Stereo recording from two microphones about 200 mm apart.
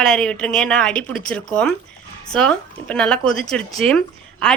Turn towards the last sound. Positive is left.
turn(degrees=5)  # may be behind; listen again after turning